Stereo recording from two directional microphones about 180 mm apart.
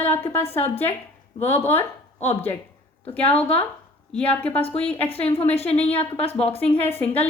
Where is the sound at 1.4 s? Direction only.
35° left (ahead or behind).